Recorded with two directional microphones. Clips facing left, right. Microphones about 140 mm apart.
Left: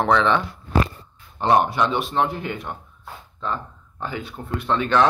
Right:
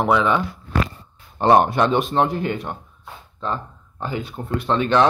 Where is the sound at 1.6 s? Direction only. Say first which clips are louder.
Right 3 dB; 45° right (ahead or behind).